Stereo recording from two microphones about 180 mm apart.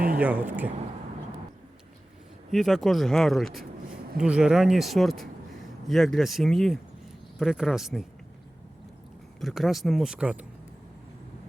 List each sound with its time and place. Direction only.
0.2 s speech: 10° right (ahead or behind)
2.5 s speech: centre (ahead or behind)
9.4 s speech: centre (ahead or behind)